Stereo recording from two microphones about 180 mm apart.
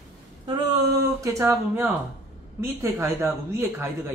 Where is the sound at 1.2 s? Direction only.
15° right (ahead or behind).